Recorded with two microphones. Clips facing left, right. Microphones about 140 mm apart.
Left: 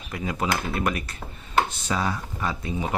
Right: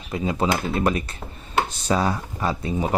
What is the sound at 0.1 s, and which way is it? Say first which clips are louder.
Speech: right 4 dB; 25° right (ahead or behind).